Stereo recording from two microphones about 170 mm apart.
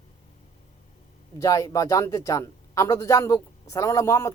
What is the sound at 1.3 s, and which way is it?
Speech, 20° left (ahead or behind).